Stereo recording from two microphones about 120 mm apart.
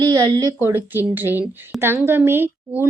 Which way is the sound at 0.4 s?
20° right (ahead or behind).